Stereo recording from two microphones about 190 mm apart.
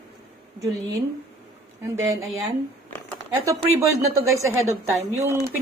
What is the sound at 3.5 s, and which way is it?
Speech, 15° right (ahead or behind).